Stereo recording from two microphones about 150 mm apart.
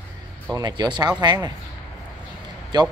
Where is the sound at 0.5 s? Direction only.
30° right (ahead or behind).